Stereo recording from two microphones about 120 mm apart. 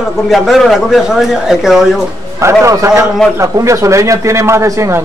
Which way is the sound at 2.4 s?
25° right (ahead or behind).